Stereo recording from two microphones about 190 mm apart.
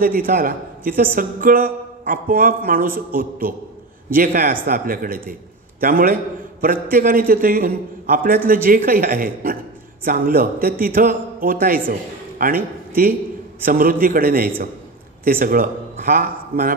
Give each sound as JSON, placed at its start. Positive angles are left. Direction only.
{"t": 0.0, "sound": "a man's voice", "side_deg": -50}